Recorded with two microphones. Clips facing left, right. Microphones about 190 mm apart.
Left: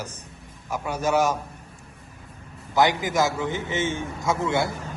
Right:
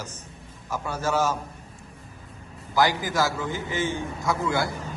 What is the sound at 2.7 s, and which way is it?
A man's voice, 20° left (ahead or behind).